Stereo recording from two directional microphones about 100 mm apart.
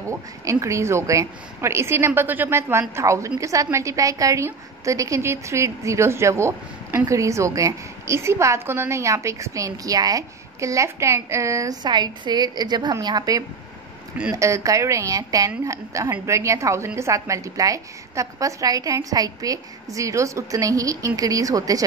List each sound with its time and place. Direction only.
0.1 s a woman's voice: 30° right (ahead or behind)